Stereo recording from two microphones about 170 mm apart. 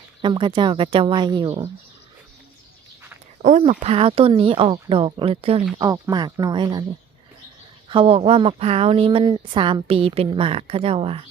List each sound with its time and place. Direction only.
0.2 s speech: 30° right (ahead or behind)
3.7 s speech: 35° right (ahead or behind)
5.7 s speech: 25° right (ahead or behind)
7.9 s speech: 35° right (ahead or behind)